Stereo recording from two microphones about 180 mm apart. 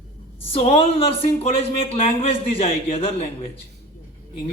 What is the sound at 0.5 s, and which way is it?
Speech, 35° left (ahead or behind).